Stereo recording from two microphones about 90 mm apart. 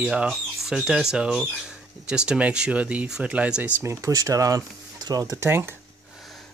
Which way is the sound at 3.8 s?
35° right (ahead or behind).